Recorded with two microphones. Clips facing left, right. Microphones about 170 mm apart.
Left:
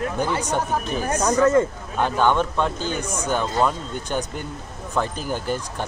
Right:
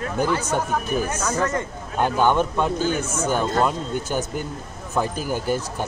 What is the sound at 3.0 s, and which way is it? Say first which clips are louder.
Speech: right 2 dB; 15° left (ahead or behind).